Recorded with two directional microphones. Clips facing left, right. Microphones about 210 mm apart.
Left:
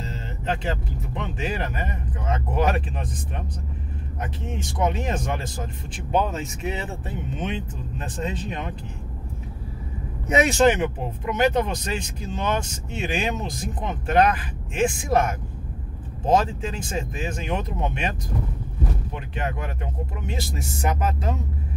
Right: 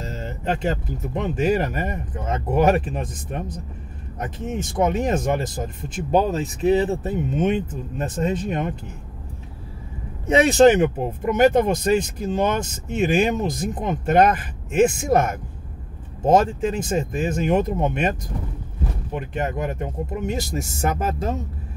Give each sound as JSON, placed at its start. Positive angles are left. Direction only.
{"t": 0.0, "sound": "speech", "side_deg": -45}
{"t": 10.2, "sound": "speech", "side_deg": -30}
{"t": 19.1, "sound": "speech", "side_deg": -45}